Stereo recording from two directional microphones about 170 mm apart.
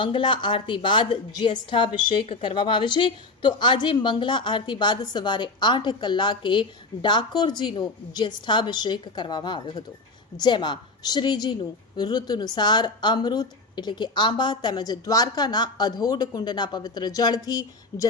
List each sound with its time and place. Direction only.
0.0 s a woman's voice: 30° left (ahead or behind)